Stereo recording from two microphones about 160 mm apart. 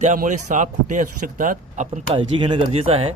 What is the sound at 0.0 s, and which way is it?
Speech, 50° right (ahead or behind).